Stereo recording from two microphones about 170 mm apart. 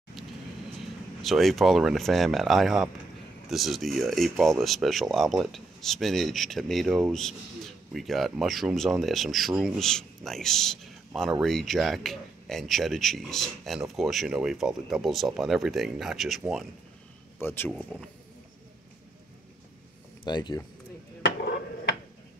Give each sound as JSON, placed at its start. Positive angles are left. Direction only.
{"t": 1.2, "sound": "speech", "side_deg": 0}
{"t": 17.4, "sound": "speech", "side_deg": 15}
{"t": 20.2, "sound": "speech", "side_deg": 25}